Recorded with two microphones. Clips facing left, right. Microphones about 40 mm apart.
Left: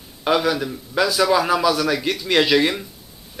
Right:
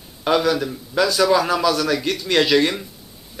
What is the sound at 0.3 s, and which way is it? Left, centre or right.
A man's voice, centre.